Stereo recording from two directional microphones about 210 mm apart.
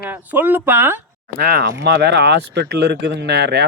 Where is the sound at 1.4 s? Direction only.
50° right (ahead or behind).